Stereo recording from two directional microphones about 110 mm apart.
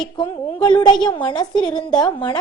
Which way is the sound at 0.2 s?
40° left (ahead or behind).